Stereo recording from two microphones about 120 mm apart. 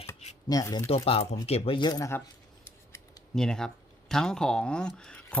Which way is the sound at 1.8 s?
35° left (ahead or behind).